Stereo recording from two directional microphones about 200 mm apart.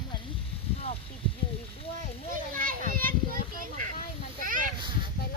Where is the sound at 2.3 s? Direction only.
45° right (ahead or behind).